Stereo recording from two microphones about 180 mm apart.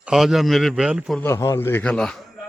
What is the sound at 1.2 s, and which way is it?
Speech, 20° left (ahead or behind).